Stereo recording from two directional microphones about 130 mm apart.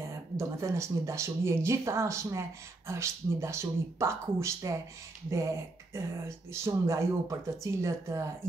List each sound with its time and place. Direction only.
0.1 s speech: 25° right (ahead or behind)
5.9 s speech: 20° right (ahead or behind)